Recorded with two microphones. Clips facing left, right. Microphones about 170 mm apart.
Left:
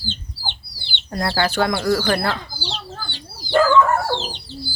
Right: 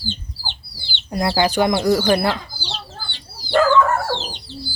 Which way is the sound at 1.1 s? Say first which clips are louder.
Right 3 dB; 15° right (ahead or behind).